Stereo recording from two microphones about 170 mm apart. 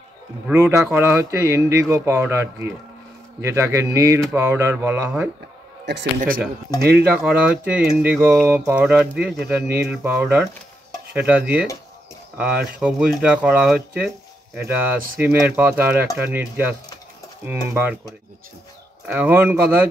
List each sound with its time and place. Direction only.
0.5 s speech: 15° right (ahead or behind)
5.9 s a man's voice: 70° right (ahead or behind)
7.2 s speech: 10° right (ahead or behind)
19.0 s speech: 10° right (ahead or behind)